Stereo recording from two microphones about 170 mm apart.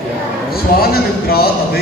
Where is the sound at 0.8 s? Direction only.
65° left (ahead or behind).